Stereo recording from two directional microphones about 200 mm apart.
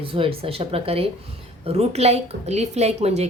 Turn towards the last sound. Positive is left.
turn(degrees=-35)  # may be behind; listen again after turning